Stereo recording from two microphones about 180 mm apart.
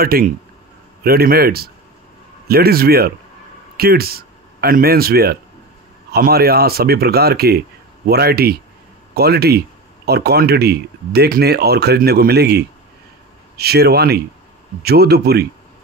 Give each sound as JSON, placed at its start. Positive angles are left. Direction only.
{"t": 0.0, "sound": "speech", "side_deg": -55}